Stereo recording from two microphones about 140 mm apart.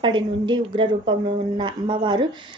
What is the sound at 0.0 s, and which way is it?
A woman's voice, 35° right (ahead or behind).